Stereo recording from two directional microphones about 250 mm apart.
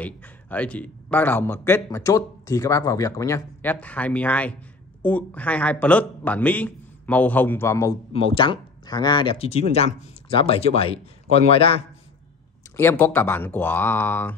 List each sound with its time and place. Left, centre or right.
0.0 s a man's voice: centre
8.1 s speech: left
12.7 s a man's voice: centre